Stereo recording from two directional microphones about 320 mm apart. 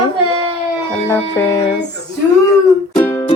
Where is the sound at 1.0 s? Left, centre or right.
Centre.